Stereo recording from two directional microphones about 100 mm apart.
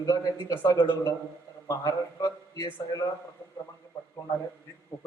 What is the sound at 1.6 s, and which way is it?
A man's voice, 35° left (ahead or behind).